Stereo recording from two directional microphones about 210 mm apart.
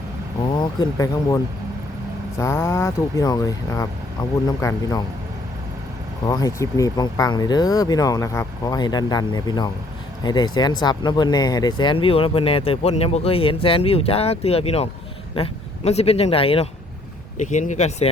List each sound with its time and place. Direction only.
0.5 s speech: 20° left (ahead or behind)
2.4 s speech: 10° left (ahead or behind)
6.2 s speech: 15° left (ahead or behind); by 18.1 s 30° left (ahead or behind)